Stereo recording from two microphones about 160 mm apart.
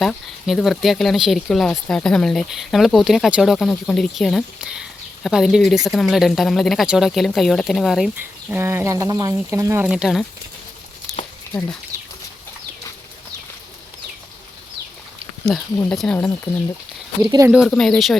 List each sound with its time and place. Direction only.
0.0 s speech: centre (ahead or behind)
8.5 s speech: 15° right (ahead or behind)
9.8 s speech: 5° right (ahead or behind)
15.5 s speech: centre (ahead or behind)
17.2 s speech: 25° right (ahead or behind)
17.7 s speech: 5° left (ahead or behind)